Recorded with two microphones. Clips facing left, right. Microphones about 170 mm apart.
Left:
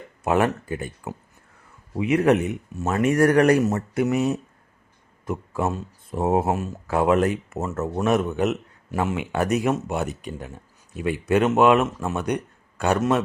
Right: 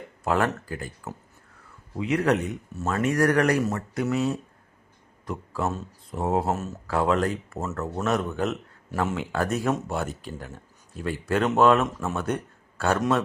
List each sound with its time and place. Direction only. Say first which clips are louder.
0.3 s speech: left 4 dB; 20° left (ahead or behind)
3.0 s speech: left 4 dB; 30° left (ahead or behind); by 13.2 s 5° left (ahead or behind)